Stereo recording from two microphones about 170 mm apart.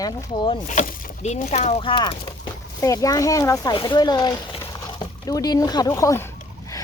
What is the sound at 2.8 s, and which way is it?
Speech, 20° left (ahead or behind).